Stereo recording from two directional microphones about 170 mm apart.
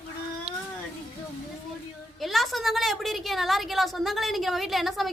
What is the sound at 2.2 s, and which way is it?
A woman's voice, centre (ahead or behind).